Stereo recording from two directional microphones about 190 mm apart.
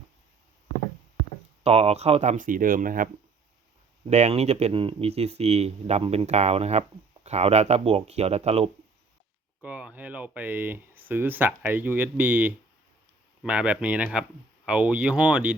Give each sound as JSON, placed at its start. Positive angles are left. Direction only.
{"t": 1.6, "sound": "speech", "side_deg": -30}
{"t": 4.1, "sound": "speech", "side_deg": -35}
{"t": 9.6, "sound": "speech", "side_deg": -5}